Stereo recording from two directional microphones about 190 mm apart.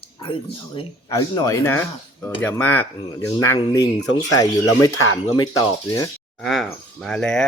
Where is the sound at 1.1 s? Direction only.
15° left (ahead or behind).